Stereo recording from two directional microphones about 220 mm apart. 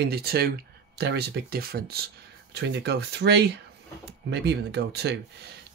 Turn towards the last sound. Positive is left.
turn(degrees=-50)  # may be behind; listen again after turning